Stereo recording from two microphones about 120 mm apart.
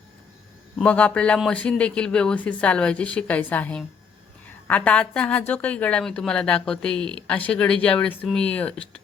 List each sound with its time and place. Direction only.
0.8 s a woman's voice: 10° left (ahead or behind)